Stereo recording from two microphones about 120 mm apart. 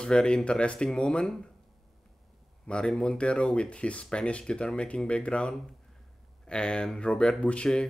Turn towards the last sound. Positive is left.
turn(degrees=10)  # may be behind; listen again after turning